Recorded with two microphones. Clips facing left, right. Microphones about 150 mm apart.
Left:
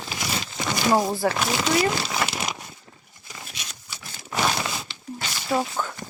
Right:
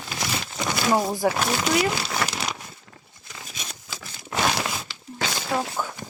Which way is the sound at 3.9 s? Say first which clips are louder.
Right 4 dB; 90° right.